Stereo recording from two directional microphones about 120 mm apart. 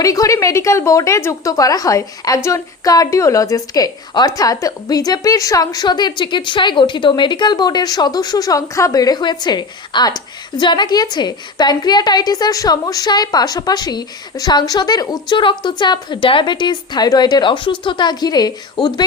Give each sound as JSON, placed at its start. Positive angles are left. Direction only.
{"t": 0.0, "sound": "speech", "side_deg": 30}